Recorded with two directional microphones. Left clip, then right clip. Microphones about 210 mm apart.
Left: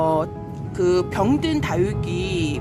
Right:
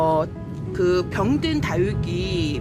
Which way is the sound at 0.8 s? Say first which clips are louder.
Left 1 dB; 5° left (ahead or behind).